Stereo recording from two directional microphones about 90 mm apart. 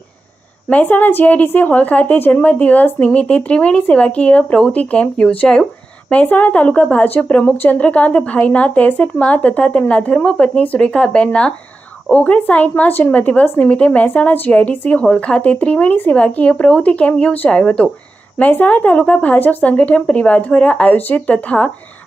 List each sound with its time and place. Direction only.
0.7 s a woman's voice: 20° left (ahead or behind)